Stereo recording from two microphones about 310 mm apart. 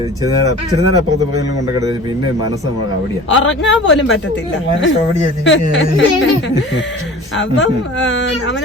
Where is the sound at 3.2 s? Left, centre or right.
Left.